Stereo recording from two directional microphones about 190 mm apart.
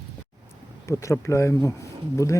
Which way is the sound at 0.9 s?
15° left (ahead or behind).